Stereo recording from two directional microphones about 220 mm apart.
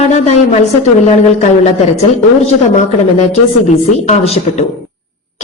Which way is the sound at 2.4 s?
30° left (ahead or behind).